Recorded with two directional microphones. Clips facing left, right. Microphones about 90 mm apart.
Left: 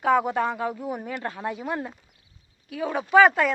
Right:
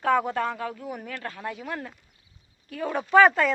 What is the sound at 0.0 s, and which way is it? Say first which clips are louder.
Speech: left 2 dB; 10° left (ahead or behind).